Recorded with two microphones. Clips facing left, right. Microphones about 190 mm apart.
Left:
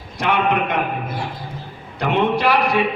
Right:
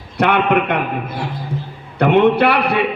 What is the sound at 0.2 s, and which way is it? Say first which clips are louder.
Speech: right 4 dB; 60° right (ahead or behind).